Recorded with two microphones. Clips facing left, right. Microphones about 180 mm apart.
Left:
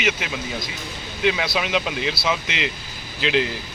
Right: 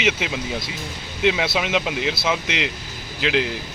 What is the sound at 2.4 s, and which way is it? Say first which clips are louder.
Speech: right 2 dB; 70° right (ahead or behind).